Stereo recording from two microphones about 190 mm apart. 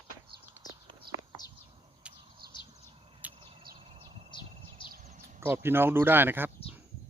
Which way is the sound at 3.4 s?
30° right (ahead or behind).